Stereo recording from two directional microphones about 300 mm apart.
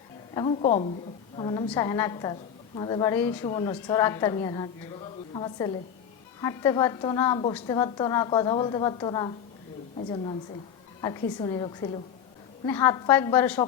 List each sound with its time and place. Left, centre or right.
0.3 s a woman's voice: centre